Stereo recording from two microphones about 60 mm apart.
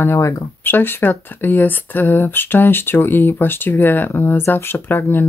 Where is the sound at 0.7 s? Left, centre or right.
Left.